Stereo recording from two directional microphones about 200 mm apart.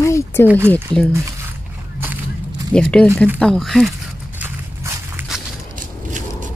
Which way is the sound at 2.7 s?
5° left (ahead or behind).